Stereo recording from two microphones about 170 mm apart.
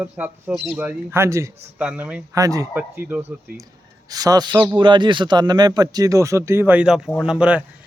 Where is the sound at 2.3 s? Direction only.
20° right (ahead or behind).